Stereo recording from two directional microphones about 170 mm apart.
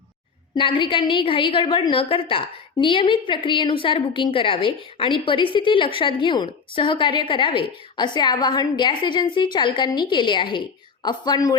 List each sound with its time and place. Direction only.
0.5 s a woman's voice: 30° left (ahead or behind)